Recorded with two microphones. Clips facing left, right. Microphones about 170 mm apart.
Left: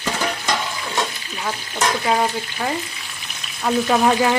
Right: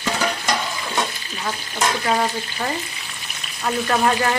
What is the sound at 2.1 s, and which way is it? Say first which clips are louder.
Stir: left 1 dB; 5° left (ahead or behind).